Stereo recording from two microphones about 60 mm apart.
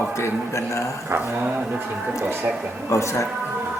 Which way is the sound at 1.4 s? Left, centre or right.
Right.